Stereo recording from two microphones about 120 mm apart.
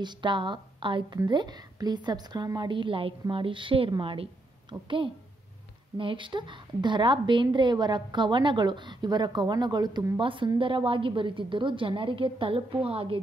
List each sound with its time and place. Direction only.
0.0 s a woman's voice: 40° right (ahead or behind)